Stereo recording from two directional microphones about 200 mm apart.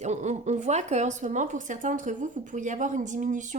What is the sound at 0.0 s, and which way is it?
Speech, 35° right (ahead or behind).